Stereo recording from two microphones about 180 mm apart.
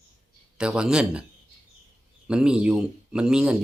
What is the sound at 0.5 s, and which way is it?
Speech, 5° right (ahead or behind).